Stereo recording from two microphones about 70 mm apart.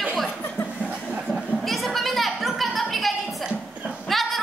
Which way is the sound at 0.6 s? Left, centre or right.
Left.